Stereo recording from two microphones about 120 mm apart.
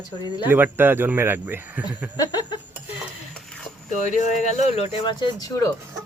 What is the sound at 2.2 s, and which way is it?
Speech, 35° left (ahead or behind).